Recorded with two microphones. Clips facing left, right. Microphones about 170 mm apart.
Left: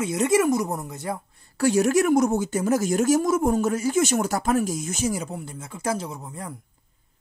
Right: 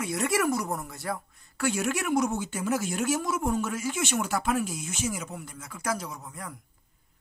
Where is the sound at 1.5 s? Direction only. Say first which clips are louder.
Left 9 dB; 35° left (ahead or behind).